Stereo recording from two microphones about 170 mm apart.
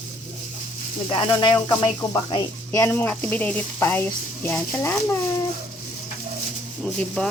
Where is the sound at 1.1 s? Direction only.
25° left (ahead or behind).